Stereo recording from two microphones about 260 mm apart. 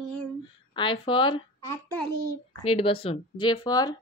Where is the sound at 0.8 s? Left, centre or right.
Centre.